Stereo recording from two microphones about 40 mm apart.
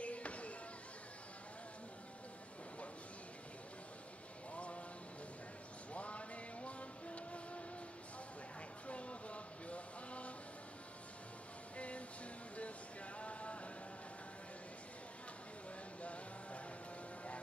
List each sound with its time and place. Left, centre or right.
0.0 s a sound: left
4.6 s music: left
5.9 s music: left
8.8 s vehicle: left
11.7 s music: left
13.2 s a sound: left
16.0 s music: left